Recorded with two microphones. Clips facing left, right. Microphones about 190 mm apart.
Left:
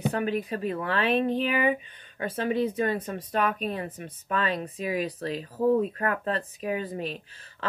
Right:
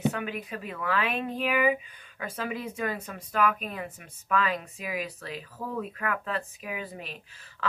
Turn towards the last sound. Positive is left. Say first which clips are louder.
# even
turn(degrees=30)  # may be behind; listen again after turning